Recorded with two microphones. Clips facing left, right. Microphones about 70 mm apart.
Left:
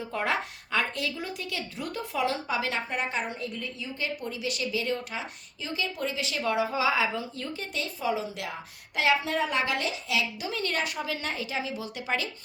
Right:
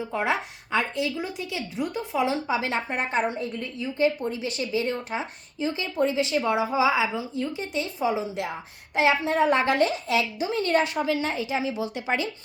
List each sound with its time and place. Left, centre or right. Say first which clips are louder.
0.1 s a woman's voice: right 2 dB; centre